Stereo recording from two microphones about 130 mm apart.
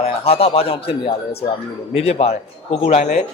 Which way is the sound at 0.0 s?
50° left (ahead or behind).